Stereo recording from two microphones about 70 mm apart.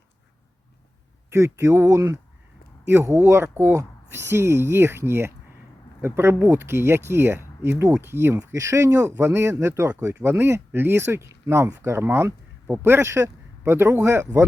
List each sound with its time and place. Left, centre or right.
1.3 s speech: right
2.8 s speech: right